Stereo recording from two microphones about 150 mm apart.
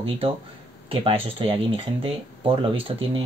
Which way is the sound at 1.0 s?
35° right (ahead or behind).